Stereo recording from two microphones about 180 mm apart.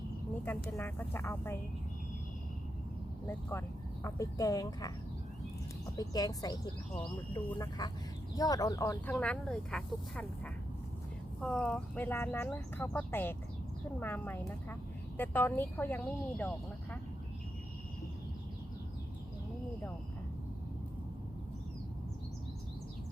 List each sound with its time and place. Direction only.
0.8 s speech: 10° left (ahead or behind)
4.0 s speech: 20° left (ahead or behind)